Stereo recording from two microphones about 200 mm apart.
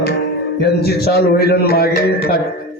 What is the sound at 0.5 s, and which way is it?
A man's voice, 55° left (ahead or behind).